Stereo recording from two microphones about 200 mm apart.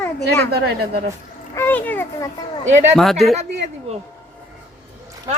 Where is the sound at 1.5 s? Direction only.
10° left (ahead or behind).